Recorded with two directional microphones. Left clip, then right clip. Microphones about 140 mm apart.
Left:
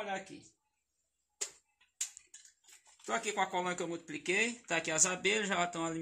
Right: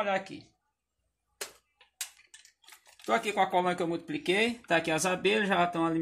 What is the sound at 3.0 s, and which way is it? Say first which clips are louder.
Speech: right 7 dB; 35° right (ahead or behind).